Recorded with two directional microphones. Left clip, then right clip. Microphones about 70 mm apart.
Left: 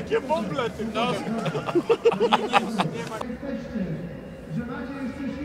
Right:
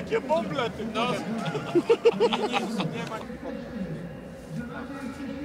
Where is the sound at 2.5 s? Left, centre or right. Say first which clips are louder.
Left 6 dB; left.